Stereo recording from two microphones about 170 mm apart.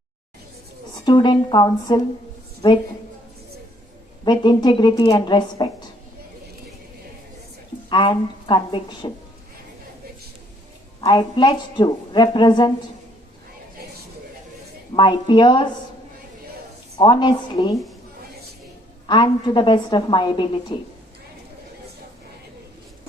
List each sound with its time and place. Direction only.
1.0 s a woman's voice: 25° left (ahead or behind)
4.3 s a woman's voice: 25° left (ahead or behind)
7.9 s a woman's voice: 25° left (ahead or behind)
11.0 s a woman's voice: 25° left (ahead or behind)
14.9 s a woman's voice: 25° left (ahead or behind)
17.0 s a woman's voice: 30° left (ahead or behind)
19.0 s a woman's voice: 25° left (ahead or behind)